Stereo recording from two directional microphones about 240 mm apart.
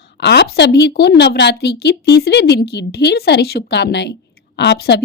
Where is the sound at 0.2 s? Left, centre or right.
Left.